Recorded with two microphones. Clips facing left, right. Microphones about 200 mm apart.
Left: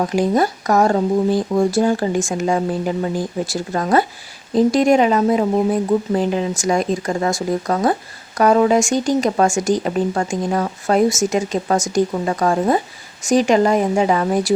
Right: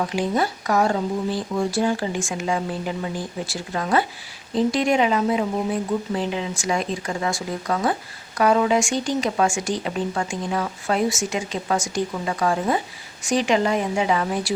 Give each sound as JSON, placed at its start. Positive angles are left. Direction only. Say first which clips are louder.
{"t": 0.0, "sound": "speech", "louder": "left 6 dB", "side_deg": 45}